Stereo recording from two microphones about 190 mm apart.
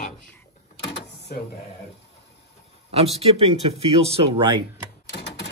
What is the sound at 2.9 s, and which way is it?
Speech, 30° right (ahead or behind).